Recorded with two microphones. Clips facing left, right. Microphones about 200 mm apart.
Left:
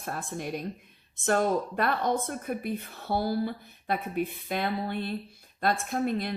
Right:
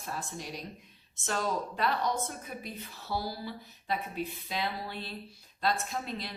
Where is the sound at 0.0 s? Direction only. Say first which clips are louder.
Left 5 dB; 55° left (ahead or behind).